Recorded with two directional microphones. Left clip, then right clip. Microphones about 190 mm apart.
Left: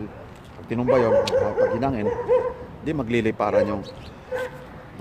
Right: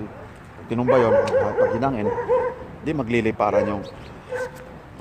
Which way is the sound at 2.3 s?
10° left (ahead or behind).